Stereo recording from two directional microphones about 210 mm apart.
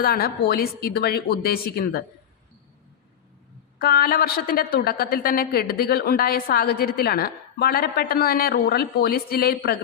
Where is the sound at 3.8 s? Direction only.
45° left (ahead or behind).